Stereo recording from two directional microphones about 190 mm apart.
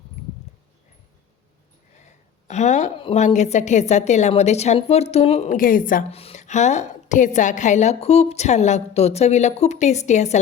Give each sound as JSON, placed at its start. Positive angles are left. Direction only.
{"t": 2.0, "sound": "a sound", "side_deg": 40}
{"t": 3.0, "sound": "a woman's voice", "side_deg": 35}
{"t": 6.1, "sound": "a woman's voice", "side_deg": 30}